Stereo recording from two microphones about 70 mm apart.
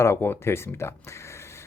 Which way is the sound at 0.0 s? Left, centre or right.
Left.